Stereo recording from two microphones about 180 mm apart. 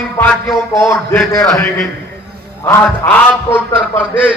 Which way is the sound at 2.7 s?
10° left (ahead or behind).